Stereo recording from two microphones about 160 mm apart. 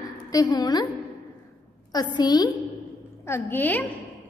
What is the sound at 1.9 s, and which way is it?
Speech, 25° left (ahead or behind).